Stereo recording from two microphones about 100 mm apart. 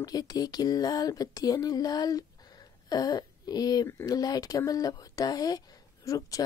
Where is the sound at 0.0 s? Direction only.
40° left (ahead or behind).